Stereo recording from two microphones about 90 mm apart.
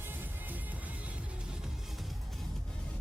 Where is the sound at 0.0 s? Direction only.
20° right (ahead or behind).